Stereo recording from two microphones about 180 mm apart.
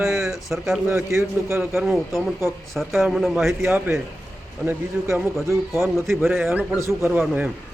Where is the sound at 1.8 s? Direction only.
Centre (ahead or behind).